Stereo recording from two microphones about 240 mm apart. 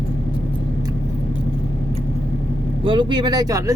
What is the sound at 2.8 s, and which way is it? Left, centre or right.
Speech, right.